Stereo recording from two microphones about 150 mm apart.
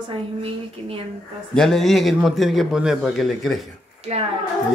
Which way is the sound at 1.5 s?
5° left (ahead or behind).